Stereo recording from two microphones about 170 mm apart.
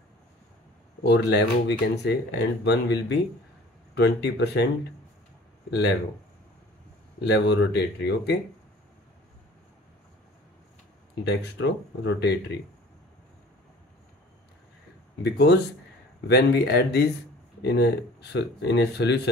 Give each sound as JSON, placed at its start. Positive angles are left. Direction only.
{"t": 1.0, "sound": "speech", "side_deg": 85}
{"t": 5.7, "sound": "speech", "side_deg": 85}
{"t": 7.2, "sound": "speech", "side_deg": 85}
{"t": 11.2, "sound": "speech", "side_deg": 90}
{"t": 15.2, "sound": "speech", "side_deg": 75}